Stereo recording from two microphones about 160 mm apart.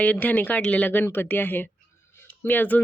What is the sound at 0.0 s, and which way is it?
Speech, 10° left (ahead or behind).